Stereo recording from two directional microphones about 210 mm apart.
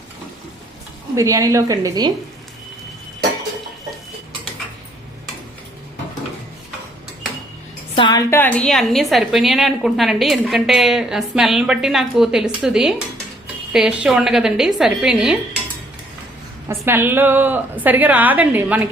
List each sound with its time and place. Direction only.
1.1 s a woman's voice: 15° right (ahead or behind)
7.9 s a woman's voice: 25° left (ahead or behind)
8.3 s a woman's voice: 10° left (ahead or behind)
16.6 s a woman's voice: 10° right (ahead or behind)